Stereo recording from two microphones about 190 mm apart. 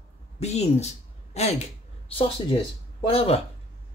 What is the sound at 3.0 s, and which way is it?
Speech, 30° left (ahead or behind).